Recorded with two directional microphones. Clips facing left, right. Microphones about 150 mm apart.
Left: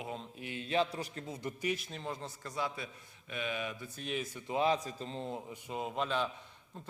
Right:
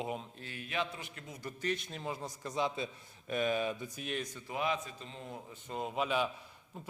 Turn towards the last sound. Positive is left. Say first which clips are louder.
# right 1 dB
turn(degrees=-10)  # may be behind; listen again after turning